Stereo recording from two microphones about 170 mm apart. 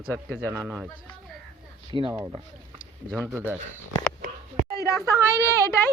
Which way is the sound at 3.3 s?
10° right (ahead or behind).